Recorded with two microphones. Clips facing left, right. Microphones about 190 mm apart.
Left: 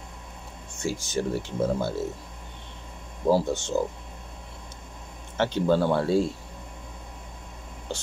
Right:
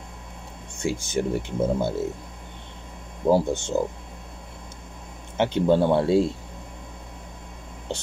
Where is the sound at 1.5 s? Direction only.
20° right (ahead or behind).